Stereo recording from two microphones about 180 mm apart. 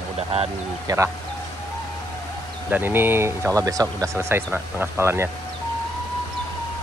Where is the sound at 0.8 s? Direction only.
15° right (ahead or behind).